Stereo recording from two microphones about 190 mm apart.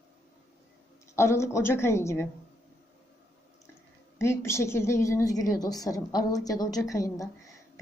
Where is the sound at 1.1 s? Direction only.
15° left (ahead or behind).